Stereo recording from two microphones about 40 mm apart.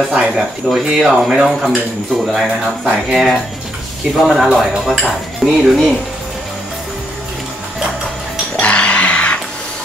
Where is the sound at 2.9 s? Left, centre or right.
Centre.